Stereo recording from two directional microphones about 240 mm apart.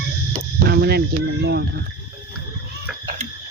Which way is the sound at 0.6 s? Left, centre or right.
Right.